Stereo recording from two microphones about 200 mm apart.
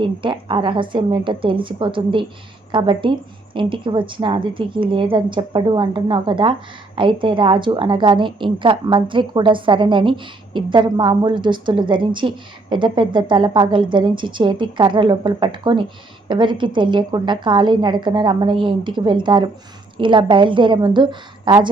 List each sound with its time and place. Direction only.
0.0 s a woman's voice: 25° right (ahead or behind)